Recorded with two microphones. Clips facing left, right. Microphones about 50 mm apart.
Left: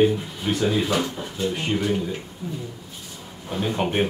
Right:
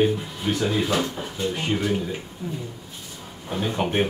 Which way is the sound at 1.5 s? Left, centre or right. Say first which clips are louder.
Even; centre.